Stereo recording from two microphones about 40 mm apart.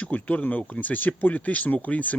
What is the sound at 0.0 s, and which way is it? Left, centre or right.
Speech, left.